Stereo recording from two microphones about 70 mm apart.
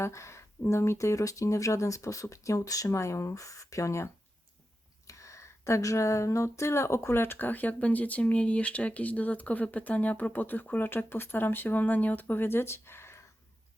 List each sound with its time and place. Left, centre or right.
0.0 s speech: left